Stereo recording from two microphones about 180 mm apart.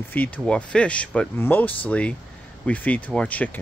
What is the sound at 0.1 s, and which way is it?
Speech, 10° left (ahead or behind).